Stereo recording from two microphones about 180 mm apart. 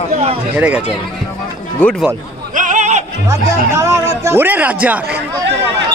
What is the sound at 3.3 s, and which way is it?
Speech, 15° right (ahead or behind).